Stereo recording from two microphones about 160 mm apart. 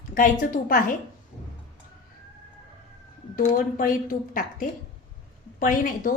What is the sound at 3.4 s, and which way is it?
A woman's voice, 55° left (ahead or behind).